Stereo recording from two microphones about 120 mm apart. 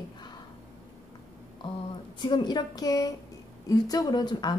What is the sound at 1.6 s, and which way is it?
A woman's voice, 40° left (ahead or behind).